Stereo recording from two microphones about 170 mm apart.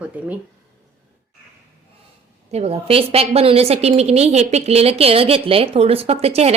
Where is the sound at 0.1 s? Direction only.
10° right (ahead or behind).